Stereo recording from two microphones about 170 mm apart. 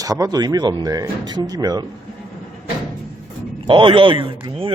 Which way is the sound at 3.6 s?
30° right (ahead or behind).